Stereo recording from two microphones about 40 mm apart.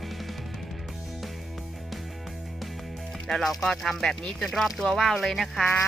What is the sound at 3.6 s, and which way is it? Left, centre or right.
Speech, centre.